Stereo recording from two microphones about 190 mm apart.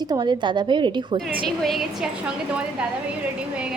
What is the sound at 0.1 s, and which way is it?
A woman's voice, 20° right (ahead or behind).